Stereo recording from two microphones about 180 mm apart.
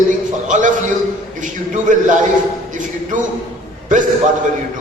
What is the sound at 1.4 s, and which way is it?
A man's voice, 45° right (ahead or behind).